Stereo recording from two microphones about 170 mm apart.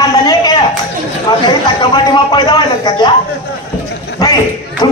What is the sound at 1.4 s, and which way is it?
A man's voice, 25° left (ahead or behind).